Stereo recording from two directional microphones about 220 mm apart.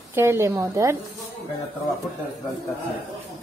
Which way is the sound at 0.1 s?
10° right (ahead or behind).